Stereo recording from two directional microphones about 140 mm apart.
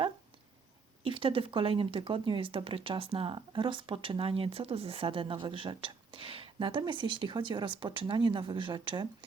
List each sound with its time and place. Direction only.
1.0 s speech: 40° right (ahead or behind)